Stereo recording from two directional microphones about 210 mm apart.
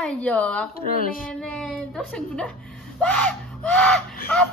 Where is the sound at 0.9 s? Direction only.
40° left (ahead or behind).